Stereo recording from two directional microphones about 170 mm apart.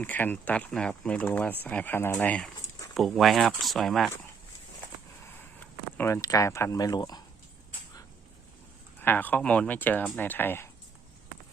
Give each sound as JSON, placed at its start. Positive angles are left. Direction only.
{"t": 0.0, "sound": "speech", "side_deg": 10}
{"t": 5.3, "sound": "speech", "side_deg": 10}
{"t": 9.0, "sound": "speech", "side_deg": 10}